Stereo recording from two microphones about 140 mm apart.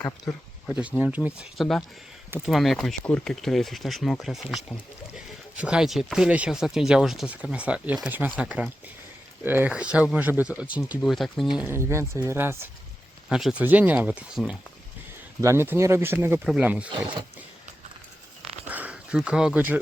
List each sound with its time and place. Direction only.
0.7 s speech: 10° right (ahead or behind)
1.5 s speech: centre (ahead or behind)
11.0 s speech: centre (ahead or behind)
11.6 s speech: 20° right (ahead or behind)
13.3 s speech: 5° right (ahead or behind)
15.4 s speech: 20° right (ahead or behind)
16.9 s speech: 35° right (ahead or behind)
18.7 s a sound: 10° right (ahead or behind)